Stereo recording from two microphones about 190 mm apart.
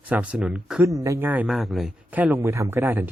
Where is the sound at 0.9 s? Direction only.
15° right (ahead or behind).